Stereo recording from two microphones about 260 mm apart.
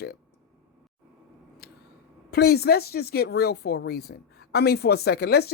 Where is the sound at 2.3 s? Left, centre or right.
Left.